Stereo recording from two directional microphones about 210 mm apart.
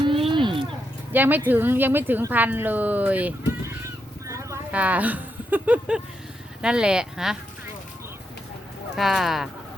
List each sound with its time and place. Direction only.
0.0 s a sound: 25° right (ahead or behind)
1.1 s speech: 10° right (ahead or behind)
9.0 s speech: centre (ahead or behind)